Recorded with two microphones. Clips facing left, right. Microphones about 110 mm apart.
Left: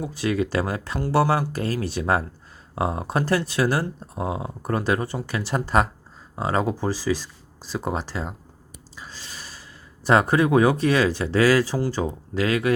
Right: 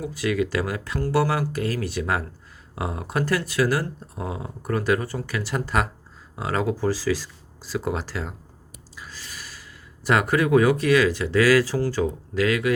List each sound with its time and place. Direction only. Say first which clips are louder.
0.0 s speech: even; 30° left (ahead or behind)